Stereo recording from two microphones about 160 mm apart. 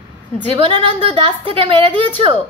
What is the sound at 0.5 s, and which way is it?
A woman's voice, 35° right (ahead or behind).